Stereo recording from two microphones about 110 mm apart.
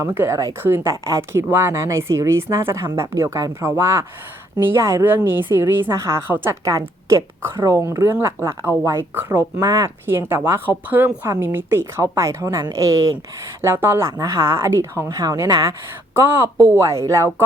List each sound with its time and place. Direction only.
0.1 s a woman's voice: 20° right (ahead or behind)
9.6 s a woman's voice: 30° right (ahead or behind)
13.6 s a woman's voice: 20° right (ahead or behind)
16.1 s a woman's voice: 20° right (ahead or behind)